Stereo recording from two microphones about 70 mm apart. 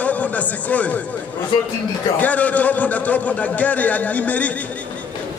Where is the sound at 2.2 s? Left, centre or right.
Left.